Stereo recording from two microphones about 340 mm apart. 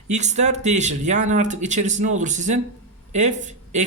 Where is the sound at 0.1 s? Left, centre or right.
Centre.